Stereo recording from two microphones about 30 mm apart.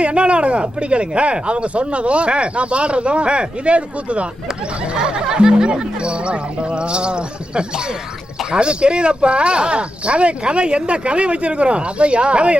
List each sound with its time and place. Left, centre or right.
0.0 s speech: right
4.9 s speech: right